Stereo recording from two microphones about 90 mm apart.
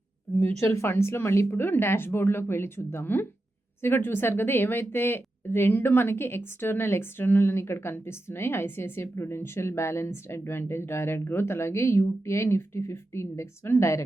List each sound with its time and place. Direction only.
0.3 s speech: 30° left (ahead or behind)